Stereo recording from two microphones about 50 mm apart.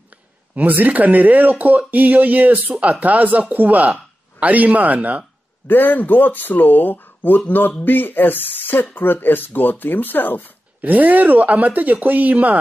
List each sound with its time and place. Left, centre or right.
0.6 s speech: right
5.7 s speech: left
10.8 s speech: right